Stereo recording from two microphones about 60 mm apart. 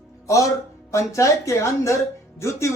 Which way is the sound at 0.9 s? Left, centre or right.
Left.